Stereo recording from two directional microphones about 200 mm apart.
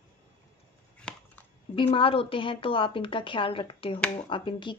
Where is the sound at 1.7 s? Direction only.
25° left (ahead or behind).